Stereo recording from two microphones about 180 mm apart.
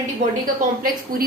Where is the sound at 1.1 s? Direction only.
50° right (ahead or behind).